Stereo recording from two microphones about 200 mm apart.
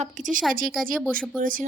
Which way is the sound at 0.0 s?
40° right (ahead or behind).